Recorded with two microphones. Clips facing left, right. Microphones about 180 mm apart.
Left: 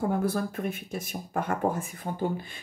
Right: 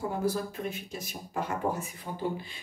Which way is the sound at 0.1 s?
55° left (ahead or behind).